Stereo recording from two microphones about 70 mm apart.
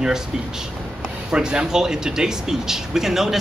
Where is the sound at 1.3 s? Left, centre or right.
Centre.